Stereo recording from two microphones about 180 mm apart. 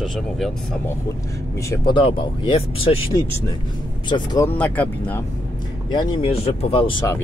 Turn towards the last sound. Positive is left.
turn(degrees=35)  # may be behind; listen again after turning